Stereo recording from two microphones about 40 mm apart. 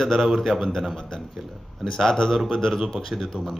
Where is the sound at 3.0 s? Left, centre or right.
Centre.